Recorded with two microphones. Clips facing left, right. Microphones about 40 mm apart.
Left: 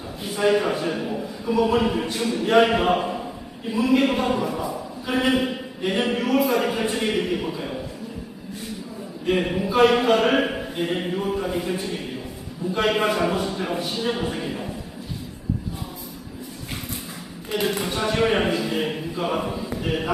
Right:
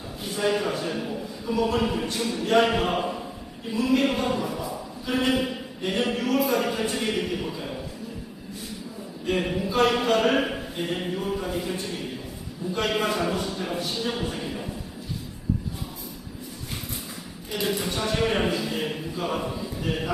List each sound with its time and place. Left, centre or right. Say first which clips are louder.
0.3 s a man's voice: left 5 dB; centre
9.2 s a man's voice: left 3 dB; centre
17.5 s a man's voice: left 3 dB; left